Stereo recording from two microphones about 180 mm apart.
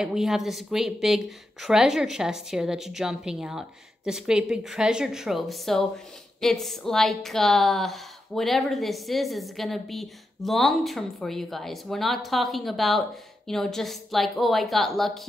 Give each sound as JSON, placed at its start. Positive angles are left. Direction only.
{"t": 0.0, "sound": "a woman's voice", "side_deg": 0}